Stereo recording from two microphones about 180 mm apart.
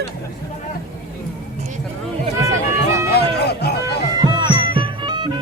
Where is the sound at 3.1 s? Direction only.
65° left (ahead or behind).